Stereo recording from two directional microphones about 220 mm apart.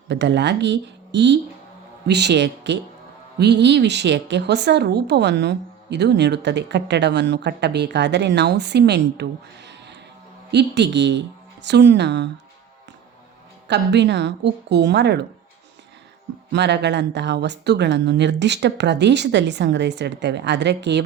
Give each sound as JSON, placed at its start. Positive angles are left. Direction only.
{"t": 0.1, "sound": "a woman's voice", "side_deg": -50}
{"t": 13.7, "sound": "a woman's voice", "side_deg": -50}
{"t": 16.5, "sound": "a woman's voice", "side_deg": -50}